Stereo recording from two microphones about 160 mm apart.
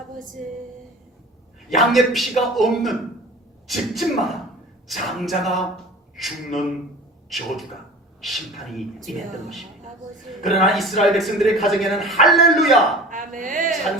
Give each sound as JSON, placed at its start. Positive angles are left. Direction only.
{"t": 1.7, "sound": "a man's voice", "side_deg": 0}
{"t": 13.1, "sound": "speech", "side_deg": -55}